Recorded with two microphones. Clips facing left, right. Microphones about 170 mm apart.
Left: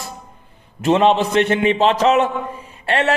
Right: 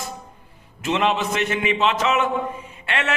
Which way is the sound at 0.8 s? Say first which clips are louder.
Left 7 dB; 35° left (ahead or behind).